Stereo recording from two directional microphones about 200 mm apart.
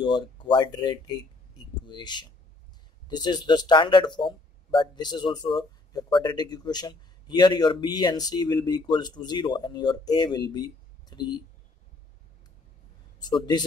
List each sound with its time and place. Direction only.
0.0 s speech: 25° left (ahead or behind)
13.2 s speech: 20° left (ahead or behind)